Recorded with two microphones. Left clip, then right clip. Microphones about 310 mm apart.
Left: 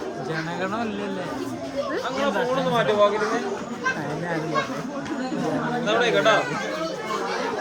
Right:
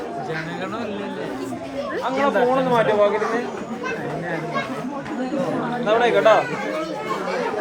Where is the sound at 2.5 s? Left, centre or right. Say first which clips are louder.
Right 3 dB; centre.